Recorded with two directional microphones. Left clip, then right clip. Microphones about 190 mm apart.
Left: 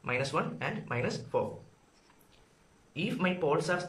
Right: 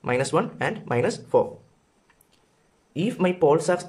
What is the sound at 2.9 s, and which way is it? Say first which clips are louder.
Speech: right 8 dB; 40° right (ahead or behind).